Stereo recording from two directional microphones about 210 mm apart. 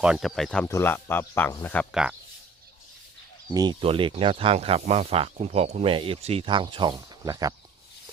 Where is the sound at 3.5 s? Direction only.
20° right (ahead or behind).